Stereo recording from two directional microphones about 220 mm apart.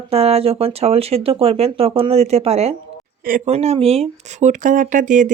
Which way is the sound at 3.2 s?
40° right (ahead or behind).